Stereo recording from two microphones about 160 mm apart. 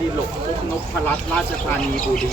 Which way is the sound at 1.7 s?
5° left (ahead or behind).